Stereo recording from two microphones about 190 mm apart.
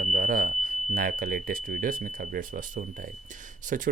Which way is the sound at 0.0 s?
45° right (ahead or behind).